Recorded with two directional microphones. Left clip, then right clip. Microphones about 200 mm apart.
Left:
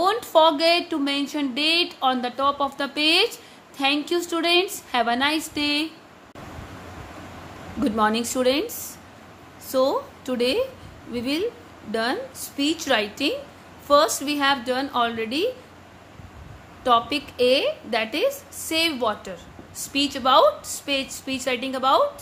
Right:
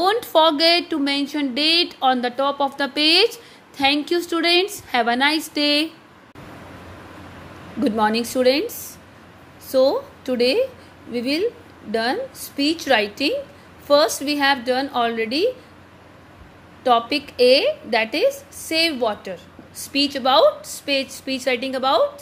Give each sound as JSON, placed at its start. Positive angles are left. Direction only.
{"t": 0.0, "sound": "a woman's voice", "side_deg": -15}
{"t": 7.8, "sound": "a woman's voice", "side_deg": -10}
{"t": 9.7, "sound": "a woman's voice", "side_deg": -10}
{"t": 16.8, "sound": "a woman's voice", "side_deg": -10}